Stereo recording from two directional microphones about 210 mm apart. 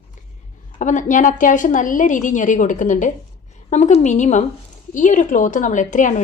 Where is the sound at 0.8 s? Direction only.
35° left (ahead or behind).